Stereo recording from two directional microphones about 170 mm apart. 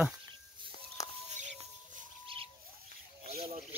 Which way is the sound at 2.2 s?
30° right (ahead or behind).